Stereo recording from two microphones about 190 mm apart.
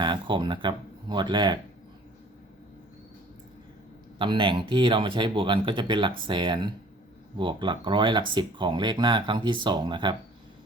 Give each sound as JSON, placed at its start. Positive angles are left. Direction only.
{"t": 0.0, "sound": "speech", "side_deg": -25}
{"t": 4.2, "sound": "speech", "side_deg": -25}